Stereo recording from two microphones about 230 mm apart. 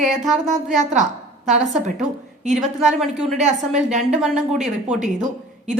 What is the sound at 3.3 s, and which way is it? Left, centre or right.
Speech, right.